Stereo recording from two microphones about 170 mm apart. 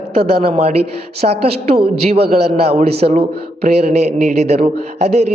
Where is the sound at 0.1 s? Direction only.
35° right (ahead or behind).